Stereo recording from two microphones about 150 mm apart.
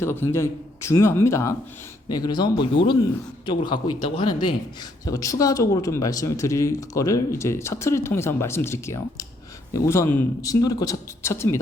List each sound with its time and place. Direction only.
0.0 s speech: 15° left (ahead or behind); by 4.5 s 30° left (ahead or behind)
5.0 s speech: 20° left (ahead or behind)